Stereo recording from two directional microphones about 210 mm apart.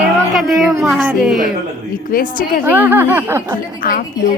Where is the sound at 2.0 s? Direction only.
40° left (ahead or behind).